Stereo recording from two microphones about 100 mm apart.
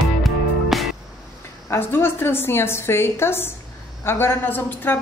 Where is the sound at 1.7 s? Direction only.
25° left (ahead or behind).